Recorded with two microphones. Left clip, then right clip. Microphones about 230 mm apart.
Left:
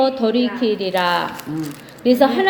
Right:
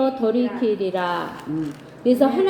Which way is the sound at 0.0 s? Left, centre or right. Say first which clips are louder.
Left 3 dB; left.